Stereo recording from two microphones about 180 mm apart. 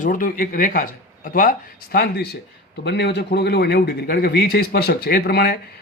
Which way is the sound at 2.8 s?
70° left (ahead or behind).